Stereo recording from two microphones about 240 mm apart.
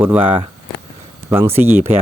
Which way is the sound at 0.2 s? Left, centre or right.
Right.